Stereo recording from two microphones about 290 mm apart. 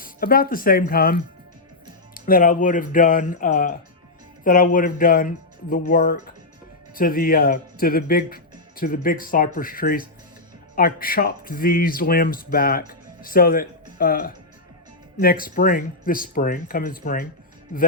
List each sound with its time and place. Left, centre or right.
0.0 s speech: left